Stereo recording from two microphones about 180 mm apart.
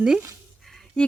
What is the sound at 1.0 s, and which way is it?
Speech, 5° left (ahead or behind).